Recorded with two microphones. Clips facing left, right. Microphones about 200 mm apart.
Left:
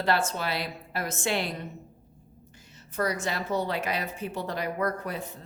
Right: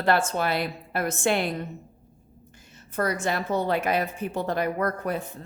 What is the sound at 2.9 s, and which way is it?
Speech, 55° right (ahead or behind).